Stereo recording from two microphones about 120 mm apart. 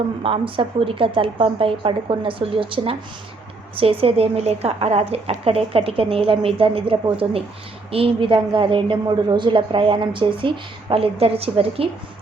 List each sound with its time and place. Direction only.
0.2 s a woman's voice: 50° right (ahead or behind)